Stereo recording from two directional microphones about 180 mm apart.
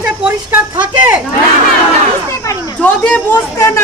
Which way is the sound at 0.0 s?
10° right (ahead or behind).